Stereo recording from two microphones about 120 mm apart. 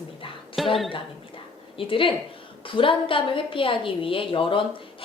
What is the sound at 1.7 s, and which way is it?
A woman's voice, 45° left (ahead or behind).